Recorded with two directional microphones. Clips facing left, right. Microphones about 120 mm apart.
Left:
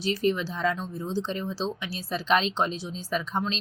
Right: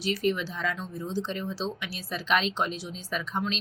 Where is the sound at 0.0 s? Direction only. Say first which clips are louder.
Left 2 dB; 30° left (ahead or behind).